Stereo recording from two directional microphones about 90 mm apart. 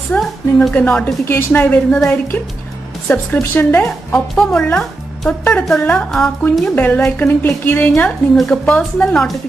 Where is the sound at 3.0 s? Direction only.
20° left (ahead or behind).